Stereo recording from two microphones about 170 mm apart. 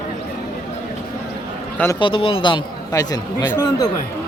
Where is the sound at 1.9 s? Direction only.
30° left (ahead or behind).